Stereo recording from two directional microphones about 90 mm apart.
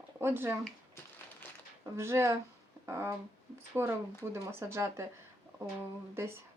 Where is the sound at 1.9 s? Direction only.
30° right (ahead or behind).